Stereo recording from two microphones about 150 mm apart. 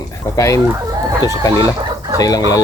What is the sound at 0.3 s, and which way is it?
Speech, 20° left (ahead or behind).